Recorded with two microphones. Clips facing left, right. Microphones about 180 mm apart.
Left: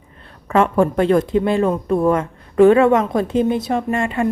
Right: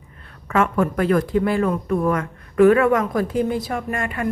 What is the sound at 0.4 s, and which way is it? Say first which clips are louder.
A woman's voice: left 4 dB; 30° left (ahead or behind).